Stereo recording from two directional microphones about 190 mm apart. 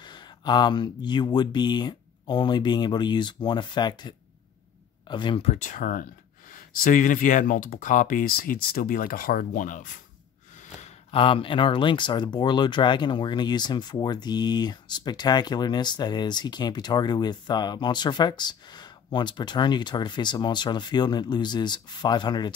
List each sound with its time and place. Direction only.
0.0 s speech: 25° left (ahead or behind); by 9.9 s 45° left (ahead or behind)
10.8 s speech: 30° left (ahead or behind)